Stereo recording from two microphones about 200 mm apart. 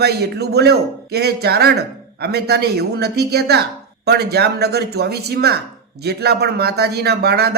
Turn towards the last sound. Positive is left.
turn(degrees=-55)  # may be behind; listen again after turning